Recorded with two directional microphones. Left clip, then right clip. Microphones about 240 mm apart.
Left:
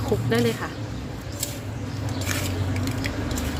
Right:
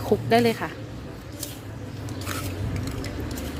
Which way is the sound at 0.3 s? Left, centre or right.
Right.